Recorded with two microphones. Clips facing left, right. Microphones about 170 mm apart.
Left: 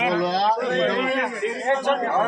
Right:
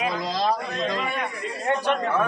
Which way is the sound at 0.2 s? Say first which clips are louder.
Left 4 dB; 60° left (ahead or behind).